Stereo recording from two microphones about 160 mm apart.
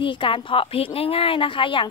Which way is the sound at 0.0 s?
30° left (ahead or behind).